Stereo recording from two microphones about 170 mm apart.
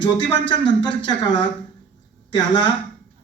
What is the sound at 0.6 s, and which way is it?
A man's voice, 25° left (ahead or behind).